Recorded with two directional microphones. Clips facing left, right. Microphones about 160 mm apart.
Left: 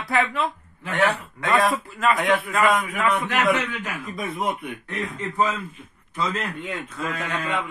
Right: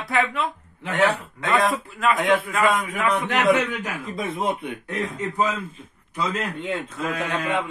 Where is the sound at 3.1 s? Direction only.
25° right (ahead or behind).